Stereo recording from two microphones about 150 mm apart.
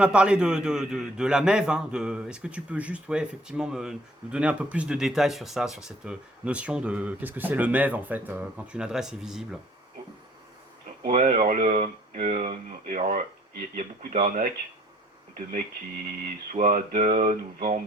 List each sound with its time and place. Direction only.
0.0 s a man's voice: 5° right (ahead or behind)
11.0 s speech: 65° right (ahead or behind)
16.5 s speech: 65° right (ahead or behind)